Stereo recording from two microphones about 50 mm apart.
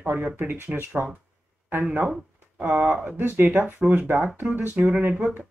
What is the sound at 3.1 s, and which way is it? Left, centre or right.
Speech, right.